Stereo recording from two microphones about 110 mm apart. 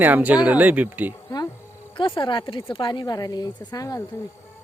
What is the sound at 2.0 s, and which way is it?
A woman's voice, 50° left (ahead or behind).